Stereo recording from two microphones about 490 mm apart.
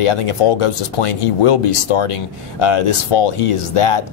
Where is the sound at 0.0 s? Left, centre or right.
Left.